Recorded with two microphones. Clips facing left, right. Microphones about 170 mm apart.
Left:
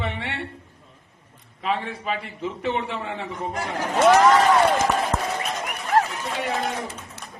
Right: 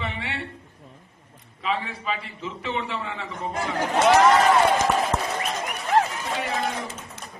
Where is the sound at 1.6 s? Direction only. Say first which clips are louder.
Left 2 dB; 55° left (ahead or behind).